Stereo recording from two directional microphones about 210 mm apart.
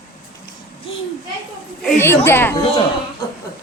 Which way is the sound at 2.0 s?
10° left (ahead or behind).